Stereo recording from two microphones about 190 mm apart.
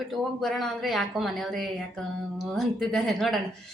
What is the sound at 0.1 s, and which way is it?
Speech, centre (ahead or behind).